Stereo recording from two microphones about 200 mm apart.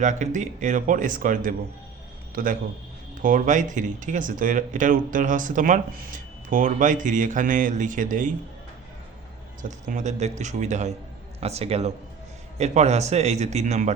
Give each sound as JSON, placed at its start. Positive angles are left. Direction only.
{"t": 0.0, "sound": "a man's voice", "side_deg": -40}
{"t": 9.6, "sound": "speech", "side_deg": -40}